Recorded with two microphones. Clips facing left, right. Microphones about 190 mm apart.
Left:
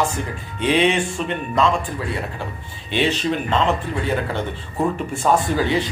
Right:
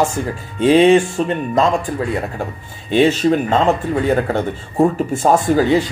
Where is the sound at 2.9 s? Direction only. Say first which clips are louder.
Right 7 dB; 45° right (ahead or behind).